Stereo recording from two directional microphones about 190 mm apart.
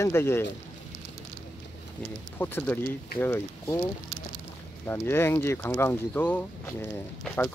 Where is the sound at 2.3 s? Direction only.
10° left (ahead or behind).